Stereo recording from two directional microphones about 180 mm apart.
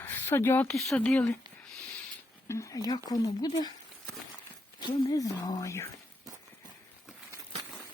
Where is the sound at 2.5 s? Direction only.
15° left (ahead or behind).